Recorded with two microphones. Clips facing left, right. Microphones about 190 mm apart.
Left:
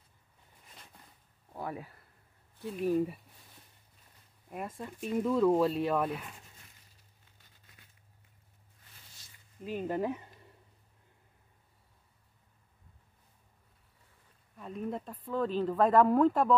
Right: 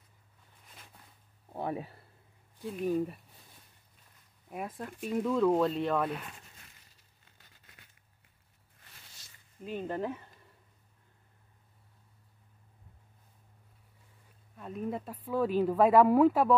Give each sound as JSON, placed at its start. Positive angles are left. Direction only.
{"t": 0.7, "sound": "a sound", "side_deg": 0}
{"t": 1.5, "sound": "a sound", "side_deg": -25}
{"t": 2.6, "sound": "speech", "side_deg": 0}
{"t": 4.5, "sound": "speech", "side_deg": 0}
{"t": 7.3, "sound": "crumpling", "side_deg": -75}
{"t": 9.6, "sound": "speech", "side_deg": 5}
{"t": 14.6, "sound": "speech", "side_deg": -5}